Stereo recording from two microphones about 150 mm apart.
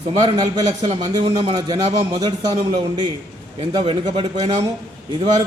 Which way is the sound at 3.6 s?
35° right (ahead or behind).